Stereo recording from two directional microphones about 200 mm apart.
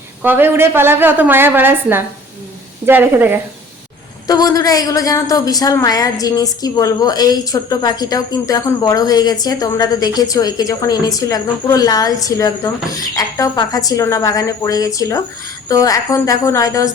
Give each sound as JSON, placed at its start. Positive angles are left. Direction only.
{"t": 0.2, "sound": "a woman's voice", "side_deg": -10}
{"t": 4.3, "sound": "a woman's voice", "side_deg": 20}